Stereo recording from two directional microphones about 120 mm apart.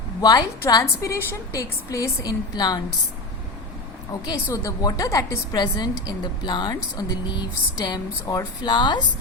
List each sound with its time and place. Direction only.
0.2 s a woman's voice: 30° left (ahead or behind)
4.4 s a woman's voice: 25° left (ahead or behind)